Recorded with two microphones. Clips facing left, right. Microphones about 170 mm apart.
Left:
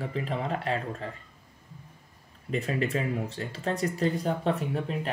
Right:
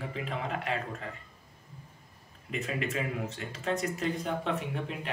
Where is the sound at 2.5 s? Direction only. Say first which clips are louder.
Left 5 dB; 35° left (ahead or behind).